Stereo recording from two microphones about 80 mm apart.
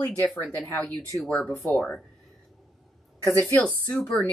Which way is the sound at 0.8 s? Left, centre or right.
Right.